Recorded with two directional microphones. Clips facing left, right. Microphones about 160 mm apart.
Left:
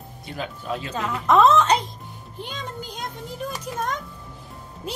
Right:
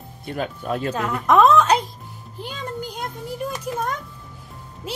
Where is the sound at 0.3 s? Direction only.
55° right (ahead or behind).